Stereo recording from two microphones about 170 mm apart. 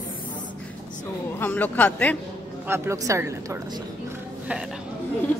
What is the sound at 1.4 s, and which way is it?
Speech, 10° left (ahead or behind).